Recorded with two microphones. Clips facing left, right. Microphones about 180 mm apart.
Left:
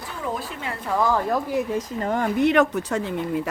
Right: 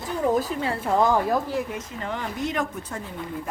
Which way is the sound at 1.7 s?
40° left (ahead or behind).